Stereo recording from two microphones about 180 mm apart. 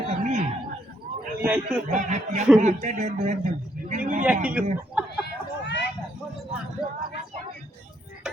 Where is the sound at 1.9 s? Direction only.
40° right (ahead or behind).